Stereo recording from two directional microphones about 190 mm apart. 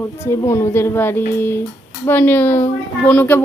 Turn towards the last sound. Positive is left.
turn(degrees=10)  # may be behind; listen again after turning